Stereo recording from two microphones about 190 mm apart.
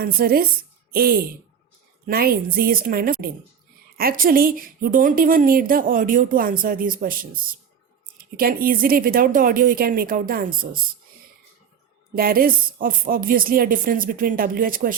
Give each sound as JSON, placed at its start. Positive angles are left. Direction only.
{"t": 0.0, "sound": "a woman's voice", "side_deg": -50}
{"t": 12.1, "sound": "a woman's voice", "side_deg": -50}